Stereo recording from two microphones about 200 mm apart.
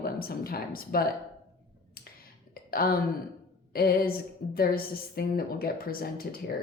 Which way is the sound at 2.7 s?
50° left (ahead or behind).